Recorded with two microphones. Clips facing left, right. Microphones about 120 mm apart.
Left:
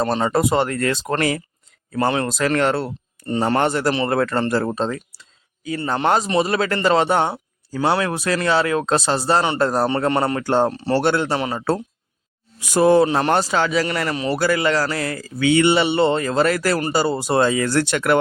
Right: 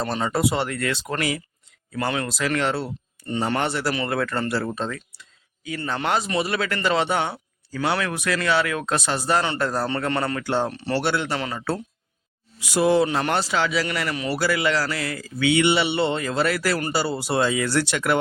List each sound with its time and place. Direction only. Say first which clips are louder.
0.0 s speech: left 4 dB; 40° left (ahead or behind)
2.0 s speech: left 5 dB; 35° left (ahead or behind)
2.3 s speech: left 5 dB; 45° left (ahead or behind)
3.2 s speech: left 5 dB; 40° left (ahead or behind)
7.8 s speech: left 5 dB; 30° left (ahead or behind)
10.4 s speech: left 6 dB; 45° left (ahead or behind)
12.5 s speech: left 5 dB; 50° left (ahead or behind)